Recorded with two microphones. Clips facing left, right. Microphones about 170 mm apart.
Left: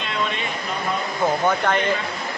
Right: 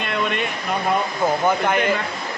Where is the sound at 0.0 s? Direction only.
55° right (ahead or behind).